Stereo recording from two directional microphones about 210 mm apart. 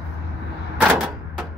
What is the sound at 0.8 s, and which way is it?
Typewriter, 10° right (ahead or behind).